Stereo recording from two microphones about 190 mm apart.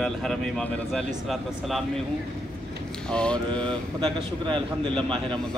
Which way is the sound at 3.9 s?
25° right (ahead or behind).